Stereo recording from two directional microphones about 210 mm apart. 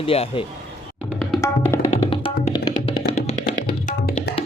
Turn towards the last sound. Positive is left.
turn(degrees=40)  # may be behind; listen again after turning